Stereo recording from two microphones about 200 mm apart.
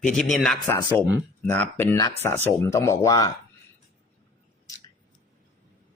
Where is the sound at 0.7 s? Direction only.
15° left (ahead or behind).